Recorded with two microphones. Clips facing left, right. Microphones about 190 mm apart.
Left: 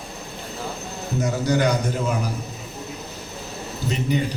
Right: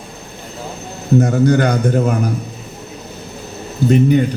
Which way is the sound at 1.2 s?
55° right (ahead or behind).